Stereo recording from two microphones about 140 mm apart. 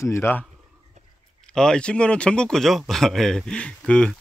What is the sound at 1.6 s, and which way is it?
Speech, 5° left (ahead or behind).